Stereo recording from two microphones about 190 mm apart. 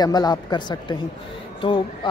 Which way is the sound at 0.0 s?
20° left (ahead or behind).